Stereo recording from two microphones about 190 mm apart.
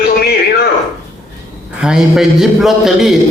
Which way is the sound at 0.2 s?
55° left (ahead or behind).